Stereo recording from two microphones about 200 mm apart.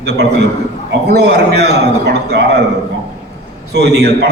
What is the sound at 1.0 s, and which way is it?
Speech, 55° right (ahead or behind).